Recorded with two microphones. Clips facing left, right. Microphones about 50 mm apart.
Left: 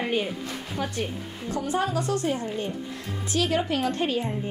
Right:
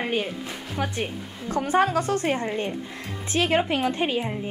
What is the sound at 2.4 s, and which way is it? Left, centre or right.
Speech, right.